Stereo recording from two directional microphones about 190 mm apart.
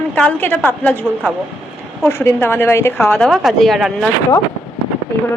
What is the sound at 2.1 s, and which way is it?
A woman's voice, 10° left (ahead or behind).